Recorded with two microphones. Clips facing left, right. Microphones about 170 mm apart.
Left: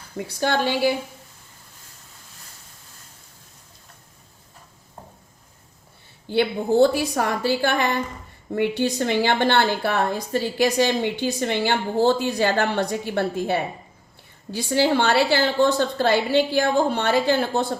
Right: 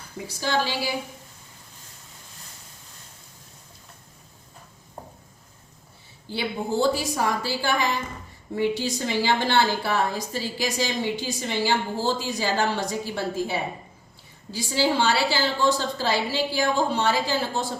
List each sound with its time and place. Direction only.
0.3 s a woman's voice: 60° left (ahead or behind)
6.2 s a woman's voice: 60° left (ahead or behind)